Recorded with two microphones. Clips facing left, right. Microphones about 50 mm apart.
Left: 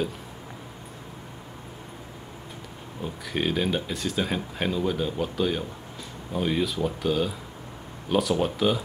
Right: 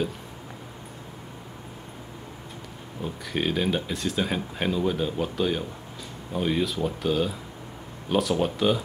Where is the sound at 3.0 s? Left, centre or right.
Centre.